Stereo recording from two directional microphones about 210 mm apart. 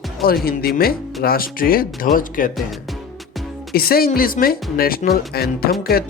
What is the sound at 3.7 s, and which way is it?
Speech, 45° left (ahead or behind).